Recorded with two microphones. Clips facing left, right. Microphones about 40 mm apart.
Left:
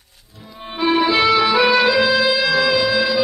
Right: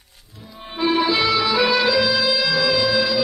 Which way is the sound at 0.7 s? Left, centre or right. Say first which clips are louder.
Left 3 dB; centre.